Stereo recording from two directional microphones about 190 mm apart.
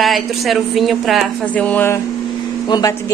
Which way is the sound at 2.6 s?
20° left (ahead or behind).